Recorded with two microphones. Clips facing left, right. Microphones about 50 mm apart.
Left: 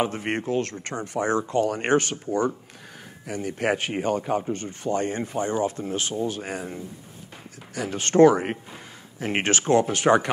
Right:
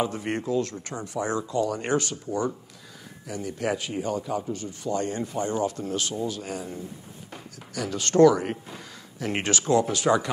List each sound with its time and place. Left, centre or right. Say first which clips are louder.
0.0 s speech: left 2 dB; left